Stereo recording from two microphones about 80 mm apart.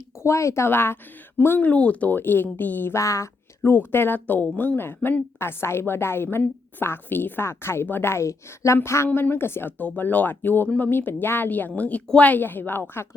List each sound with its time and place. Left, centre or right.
0.2 s a woman's voice: left
2.9 s speech: left
3.8 s a woman's voice: left
9.0 s speech: left